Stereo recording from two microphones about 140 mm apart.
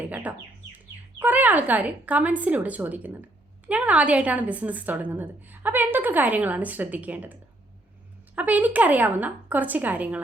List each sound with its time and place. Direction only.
0.0 s chicken: 10° right (ahead or behind)
1.2 s a woman's voice: 10° right (ahead or behind)
8.4 s a woman's voice: 10° right (ahead or behind)